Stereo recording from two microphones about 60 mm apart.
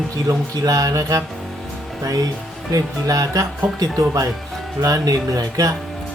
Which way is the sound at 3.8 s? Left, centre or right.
Right.